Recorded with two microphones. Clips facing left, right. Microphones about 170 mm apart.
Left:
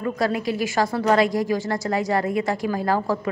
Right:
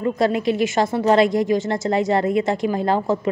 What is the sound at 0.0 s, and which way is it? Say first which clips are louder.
A woman's voice: right 4 dB; 25° right (ahead or behind).